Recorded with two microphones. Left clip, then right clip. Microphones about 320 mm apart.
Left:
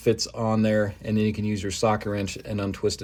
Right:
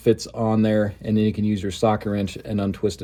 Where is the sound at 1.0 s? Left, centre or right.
Centre.